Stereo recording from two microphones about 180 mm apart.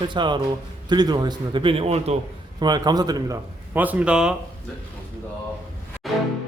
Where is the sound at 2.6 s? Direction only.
25° right (ahead or behind).